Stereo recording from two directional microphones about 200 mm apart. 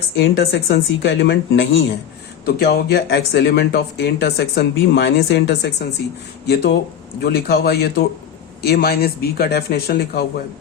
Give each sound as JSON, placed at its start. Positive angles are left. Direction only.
{"t": 0.2, "sound": "speech", "side_deg": 60}
{"t": 2.6, "sound": "speech", "side_deg": 50}